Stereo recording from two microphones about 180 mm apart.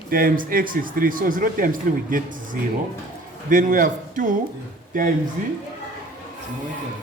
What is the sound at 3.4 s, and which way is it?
A man's voice, 50° right (ahead or behind).